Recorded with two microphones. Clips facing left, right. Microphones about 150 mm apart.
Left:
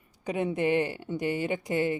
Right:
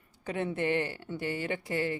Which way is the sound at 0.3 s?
15° left (ahead or behind).